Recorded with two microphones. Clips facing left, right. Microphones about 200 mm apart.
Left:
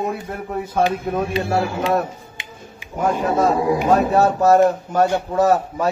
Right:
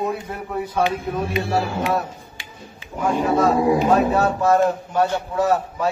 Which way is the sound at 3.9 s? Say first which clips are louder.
Left 2 dB; 45° left (ahead or behind).